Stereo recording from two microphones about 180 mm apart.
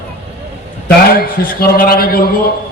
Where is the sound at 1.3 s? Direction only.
55° left (ahead or behind).